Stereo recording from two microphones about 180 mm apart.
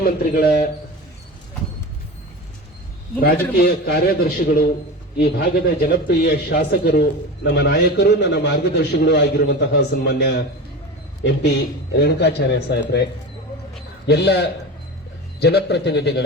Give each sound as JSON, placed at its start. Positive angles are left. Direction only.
{"t": 0.0, "sound": "a man's voice", "side_deg": 55}
{"t": 3.2, "sound": "a man's voice", "side_deg": 60}
{"t": 11.9, "sound": "speech", "side_deg": 70}
{"t": 14.1, "sound": "speech", "side_deg": 65}